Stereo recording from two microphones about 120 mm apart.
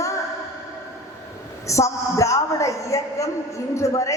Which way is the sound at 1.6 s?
25° left (ahead or behind).